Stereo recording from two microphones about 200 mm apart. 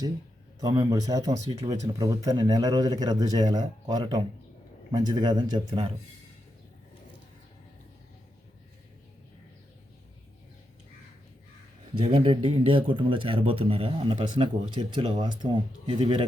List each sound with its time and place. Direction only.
0.6 s speech: 20° right (ahead or behind)
11.9 s speech: 25° right (ahead or behind)